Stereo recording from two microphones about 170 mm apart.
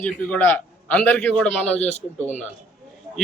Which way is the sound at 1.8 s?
40° left (ahead or behind).